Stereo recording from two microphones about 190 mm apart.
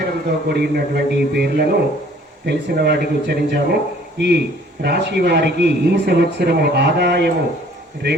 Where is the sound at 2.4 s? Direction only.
60° right (ahead or behind).